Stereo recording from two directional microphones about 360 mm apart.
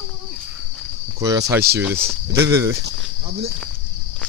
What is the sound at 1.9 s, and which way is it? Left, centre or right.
Speech, right.